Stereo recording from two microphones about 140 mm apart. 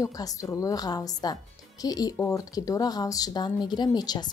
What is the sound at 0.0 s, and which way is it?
A woman's voice, 25° left (ahead or behind).